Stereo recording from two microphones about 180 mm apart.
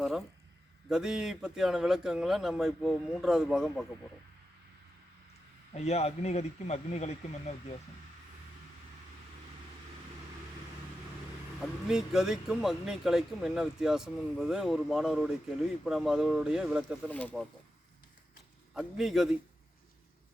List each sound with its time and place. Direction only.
0.9 s speech: 5° right (ahead or behind)
5.7 s speech: 35° left (ahead or behind)
11.6 s speech: 5° right (ahead or behind)
17.1 s speech: 10° left (ahead or behind)
18.7 s speech: centre (ahead or behind)